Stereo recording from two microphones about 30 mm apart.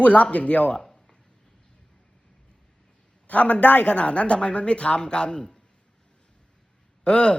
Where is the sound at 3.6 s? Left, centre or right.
Left.